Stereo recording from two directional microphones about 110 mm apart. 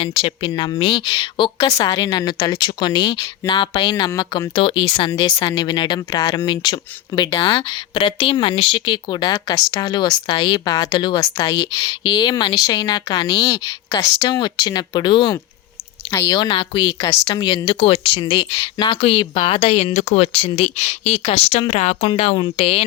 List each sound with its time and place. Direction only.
0.0 s a woman's voice: 50° left (ahead or behind); by 4.6 s 35° left (ahead or behind)
4.6 s a woman's voice: 45° left (ahead or behind)
17.0 s speech: 35° left (ahead or behind)
17.7 s speech: 60° left (ahead or behind)
18.3 s a woman's voice: 40° left (ahead or behind)
18.9 s a woman's voice: 60° left (ahead or behind)
21.7 s speech: 90° left
22.0 s speech: 65° left (ahead or behind)